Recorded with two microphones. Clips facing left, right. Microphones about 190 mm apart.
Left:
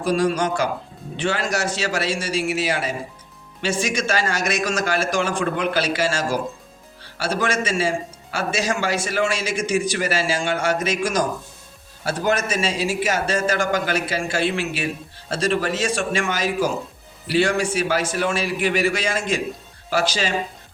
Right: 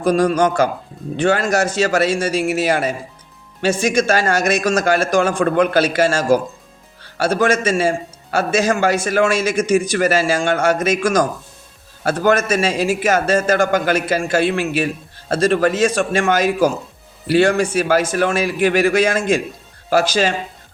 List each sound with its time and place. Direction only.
0.0 s a man's voice: 45° right (ahead or behind)